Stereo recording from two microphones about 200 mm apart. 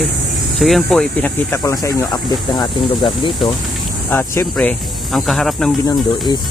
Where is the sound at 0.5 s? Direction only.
Centre (ahead or behind); by 3.3 s 20° left (ahead or behind).